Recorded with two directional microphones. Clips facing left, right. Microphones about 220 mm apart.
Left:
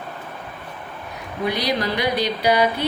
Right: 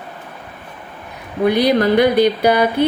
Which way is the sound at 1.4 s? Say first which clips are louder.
Right 9 dB; 55° right (ahead or behind).